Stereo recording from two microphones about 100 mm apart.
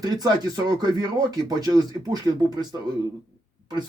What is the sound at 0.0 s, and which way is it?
Speech, 40° right (ahead or behind).